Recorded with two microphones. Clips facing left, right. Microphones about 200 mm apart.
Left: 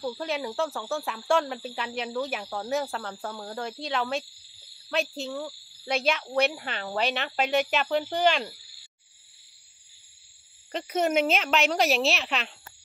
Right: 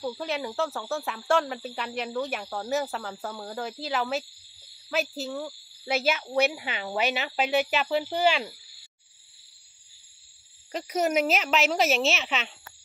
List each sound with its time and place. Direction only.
0.0 s speech: centre (ahead or behind)
10.7 s speech: centre (ahead or behind)